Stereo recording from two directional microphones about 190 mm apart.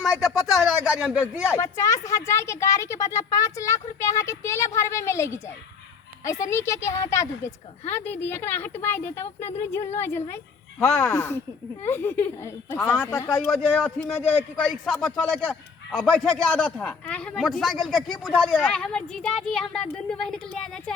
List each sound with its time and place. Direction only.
0.0 s a man's voice: centre (ahead or behind)
1.2 s speech: 15° left (ahead or behind)
6.5 s a man's voice: 15° left (ahead or behind)